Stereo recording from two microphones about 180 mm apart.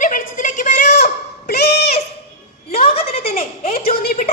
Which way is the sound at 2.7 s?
35° left (ahead or behind).